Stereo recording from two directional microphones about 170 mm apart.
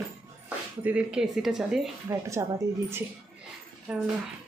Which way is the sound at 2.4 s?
20° right (ahead or behind).